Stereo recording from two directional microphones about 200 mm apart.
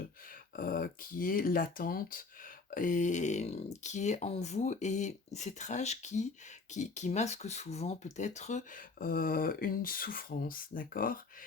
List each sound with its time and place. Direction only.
0.5 s speech: 45° left (ahead or behind)